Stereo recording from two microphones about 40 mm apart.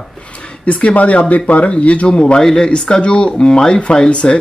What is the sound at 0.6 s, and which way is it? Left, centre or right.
Speech, left.